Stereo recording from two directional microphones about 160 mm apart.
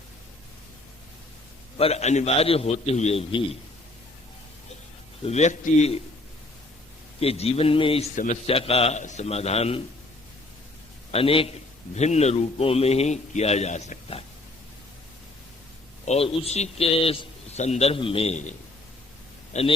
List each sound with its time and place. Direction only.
1.8 s a man's voice: 40° left (ahead or behind)
5.2 s a man's voice: 45° left (ahead or behind)
7.2 s a man's voice: 40° left (ahead or behind)
8.1 s a man's voice: 55° left (ahead or behind)
8.4 s a man's voice: 35° left (ahead or behind)
11.1 s a man's voice: 35° left (ahead or behind)
16.0 s a man's voice: 40° left (ahead or behind)
19.5 s a man's voice: 45° left (ahead or behind)